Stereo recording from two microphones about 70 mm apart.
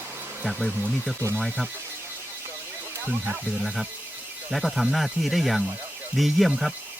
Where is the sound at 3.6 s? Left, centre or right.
Centre.